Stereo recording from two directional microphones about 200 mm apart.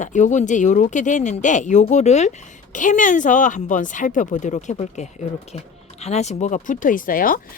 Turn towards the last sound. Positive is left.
turn(degrees=45)  # may be behind; listen again after turning